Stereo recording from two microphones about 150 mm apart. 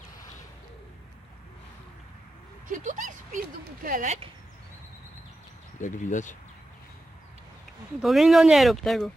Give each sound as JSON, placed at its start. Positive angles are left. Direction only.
{"t": 2.6, "sound": "speech", "side_deg": -60}
{"t": 5.8, "sound": "speech", "side_deg": 55}
{"t": 7.9, "sound": "speech", "side_deg": 0}